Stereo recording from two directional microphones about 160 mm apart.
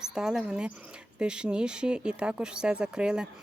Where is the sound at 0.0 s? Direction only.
5° right (ahead or behind).